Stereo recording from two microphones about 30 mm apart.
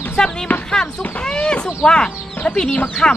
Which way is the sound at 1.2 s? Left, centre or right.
Left.